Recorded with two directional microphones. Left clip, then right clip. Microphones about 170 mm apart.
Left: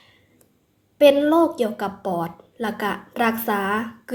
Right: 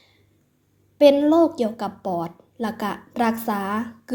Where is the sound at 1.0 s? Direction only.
35° right (ahead or behind).